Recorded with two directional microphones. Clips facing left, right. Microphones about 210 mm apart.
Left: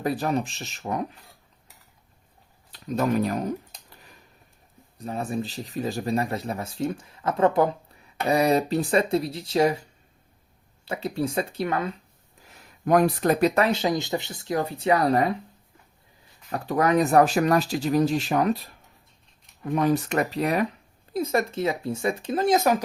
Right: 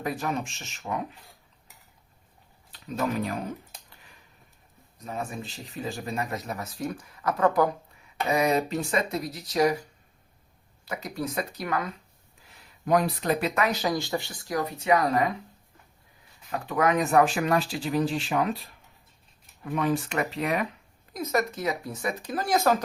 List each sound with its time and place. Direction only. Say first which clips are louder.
0.0 s speech: left 5 dB; 35° left (ahead or behind)
2.8 s speech: left 5 dB; 40° left (ahead or behind)
4.9 s speech: left 6 dB; 30° left (ahead or behind)
10.8 s speech: left 5 dB; 30° left (ahead or behind)
12.8 s speech: left 4 dB; 50° left (ahead or behind)
16.5 s speech: left 3 dB; 35° left (ahead or behind); by 22.8 s 20° left (ahead or behind)